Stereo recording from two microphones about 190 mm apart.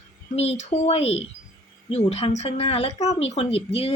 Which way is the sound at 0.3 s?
35° left (ahead or behind).